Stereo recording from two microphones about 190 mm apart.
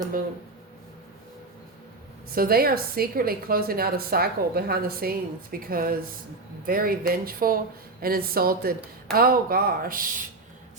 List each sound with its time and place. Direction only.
2.3 s a woman's voice: 50° right (ahead or behind)